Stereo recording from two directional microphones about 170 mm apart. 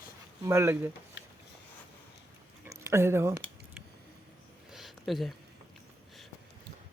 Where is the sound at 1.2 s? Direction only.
90° left.